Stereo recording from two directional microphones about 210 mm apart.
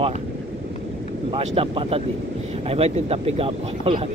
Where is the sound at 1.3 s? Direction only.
25° right (ahead or behind).